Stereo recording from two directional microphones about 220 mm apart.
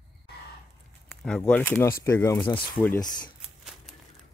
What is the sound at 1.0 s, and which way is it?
Speech, 5° left (ahead or behind).